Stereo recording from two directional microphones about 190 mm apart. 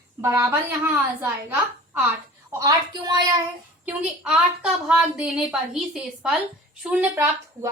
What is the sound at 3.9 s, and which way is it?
A woman's voice, 5° right (ahead or behind).